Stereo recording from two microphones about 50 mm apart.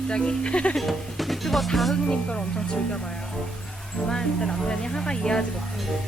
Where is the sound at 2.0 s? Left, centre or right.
Centre.